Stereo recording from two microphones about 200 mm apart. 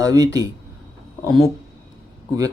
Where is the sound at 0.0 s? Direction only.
15° right (ahead or behind).